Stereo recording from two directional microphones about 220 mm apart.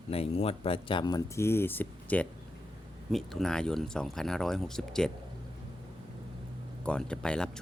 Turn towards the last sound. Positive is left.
turn(degrees=5)  # may be behind; listen again after turning